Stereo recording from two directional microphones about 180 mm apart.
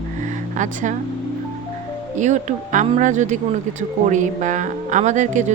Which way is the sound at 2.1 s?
40° right (ahead or behind).